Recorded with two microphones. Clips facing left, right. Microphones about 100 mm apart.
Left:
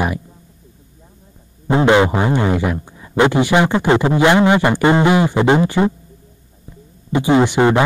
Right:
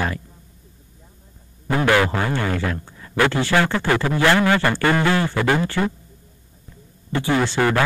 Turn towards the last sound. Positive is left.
turn(degrees=20)  # may be behind; listen again after turning